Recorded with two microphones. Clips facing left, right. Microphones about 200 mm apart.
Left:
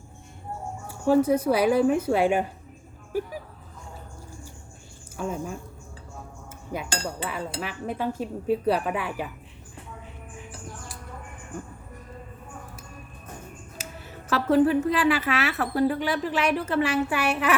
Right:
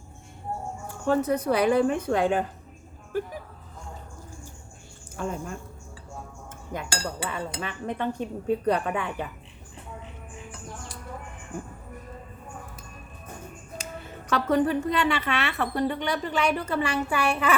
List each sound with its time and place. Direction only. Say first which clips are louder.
1.0 s a woman's voice: left 4 dB; 10° left (ahead or behind)
5.1 s a woman's voice: left 1 dB; 5° left (ahead or behind)
6.9 s speech: even; 20° left (ahead or behind)
7.6 s a woman's voice: left 1 dB; 5° left (ahead or behind)
13.7 s a woman's voice: right 5 dB; 5° left (ahead or behind)